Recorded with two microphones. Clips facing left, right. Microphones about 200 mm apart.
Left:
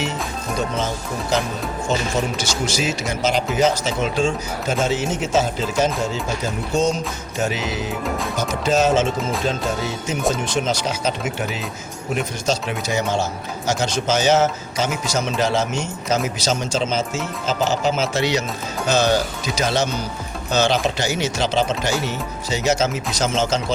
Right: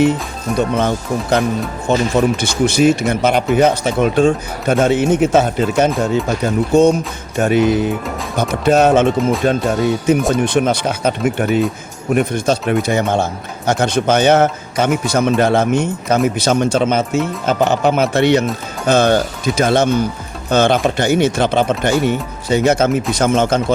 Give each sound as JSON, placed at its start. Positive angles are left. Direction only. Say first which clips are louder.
{"t": 0.8, "sound": "speech", "louder": "right 7 dB", "side_deg": -60}